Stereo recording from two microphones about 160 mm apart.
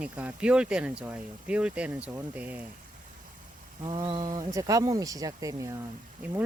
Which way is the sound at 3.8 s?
30° right (ahead or behind).